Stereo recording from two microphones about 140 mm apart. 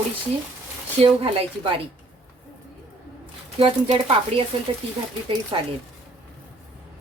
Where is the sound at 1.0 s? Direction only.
45° right (ahead or behind).